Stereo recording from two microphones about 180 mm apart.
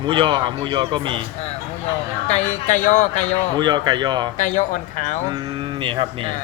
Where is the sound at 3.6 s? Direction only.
25° right (ahead or behind).